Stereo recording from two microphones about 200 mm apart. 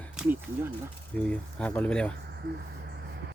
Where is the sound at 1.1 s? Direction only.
5° left (ahead or behind).